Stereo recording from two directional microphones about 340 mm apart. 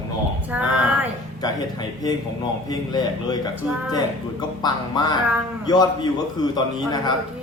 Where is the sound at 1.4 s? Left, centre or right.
Centre.